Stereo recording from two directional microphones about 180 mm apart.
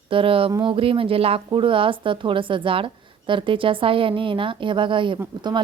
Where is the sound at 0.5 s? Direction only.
30° right (ahead or behind).